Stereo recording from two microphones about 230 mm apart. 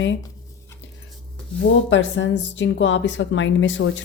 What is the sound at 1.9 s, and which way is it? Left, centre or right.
A woman's voice, left.